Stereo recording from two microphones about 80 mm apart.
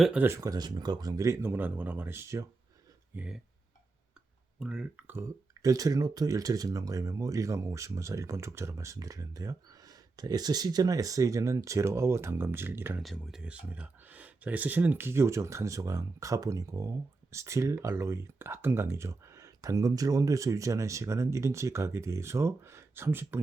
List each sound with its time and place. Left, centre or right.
0.3 s speech: right
3.1 s speech: right
4.6 s speech: centre
4.9 s speech: right
5.6 s speech: right
13.0 s speech: centre
13.4 s speech: centre